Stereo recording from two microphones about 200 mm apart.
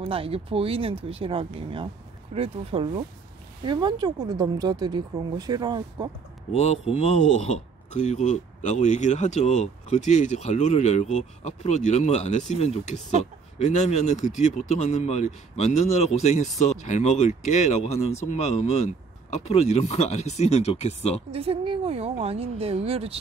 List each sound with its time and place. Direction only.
0.0 s speech: 30° right (ahead or behind)
6.5 s speech: 30° left (ahead or behind)
21.3 s speech: 30° right (ahead or behind)